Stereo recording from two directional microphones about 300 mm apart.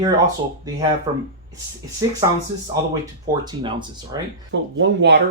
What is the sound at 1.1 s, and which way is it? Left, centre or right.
Speech, centre.